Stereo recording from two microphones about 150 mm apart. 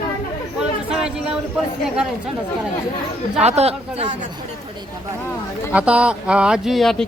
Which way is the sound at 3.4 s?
45° right (ahead or behind).